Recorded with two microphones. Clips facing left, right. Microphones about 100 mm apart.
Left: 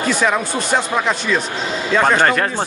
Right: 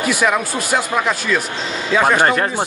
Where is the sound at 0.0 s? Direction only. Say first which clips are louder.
Even; 10° right (ahead or behind).